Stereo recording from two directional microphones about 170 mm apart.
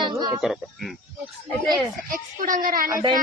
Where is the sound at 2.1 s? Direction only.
55° right (ahead or behind).